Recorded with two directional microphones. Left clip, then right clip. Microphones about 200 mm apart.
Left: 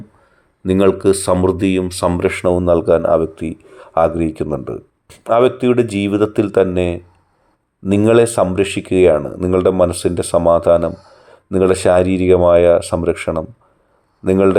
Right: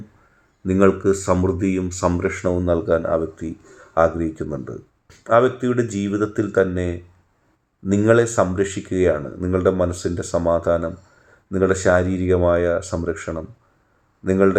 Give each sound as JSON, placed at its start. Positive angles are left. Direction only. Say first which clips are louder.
{"t": 0.6, "sound": "speech", "louder": "left 4 dB", "side_deg": 15}